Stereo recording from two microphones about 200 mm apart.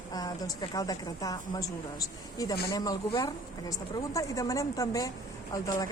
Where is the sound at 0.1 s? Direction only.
20° left (ahead or behind).